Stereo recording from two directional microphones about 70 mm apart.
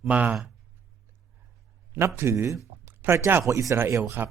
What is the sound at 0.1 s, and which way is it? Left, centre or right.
Speech, centre.